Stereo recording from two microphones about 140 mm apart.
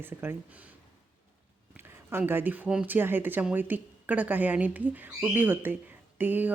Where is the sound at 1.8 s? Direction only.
15° right (ahead or behind).